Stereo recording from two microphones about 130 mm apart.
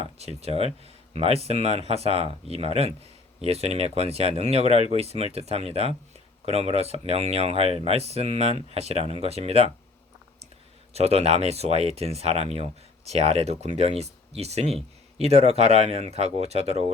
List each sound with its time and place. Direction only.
0.0 s speech: 55° right (ahead or behind)
10.9 s speech: 55° right (ahead or behind)